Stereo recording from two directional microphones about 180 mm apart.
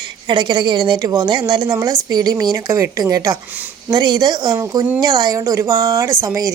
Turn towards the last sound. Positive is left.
turn(degrees=-20)  # may be behind; listen again after turning